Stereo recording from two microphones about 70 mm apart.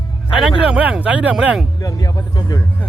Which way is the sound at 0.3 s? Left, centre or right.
Centre.